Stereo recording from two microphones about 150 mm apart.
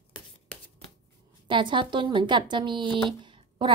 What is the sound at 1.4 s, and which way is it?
Speech, 35° right (ahead or behind).